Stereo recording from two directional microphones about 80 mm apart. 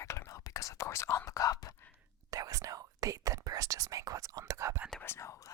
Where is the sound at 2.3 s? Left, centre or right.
Right.